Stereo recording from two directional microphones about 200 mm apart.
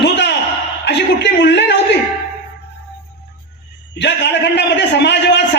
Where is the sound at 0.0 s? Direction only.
60° left (ahead or behind).